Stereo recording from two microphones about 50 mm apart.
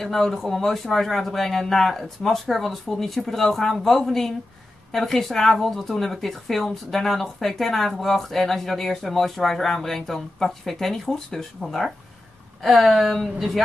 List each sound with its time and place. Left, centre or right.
0.0 s a woman's voice: centre